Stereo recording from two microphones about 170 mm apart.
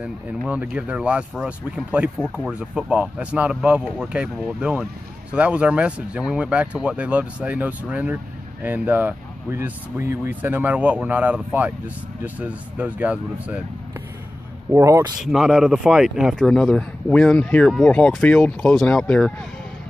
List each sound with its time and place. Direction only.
0.0 s speech: 5° right (ahead or behind)
14.7 s speech: 15° right (ahead or behind)
15.1 s speech: centre (ahead or behind)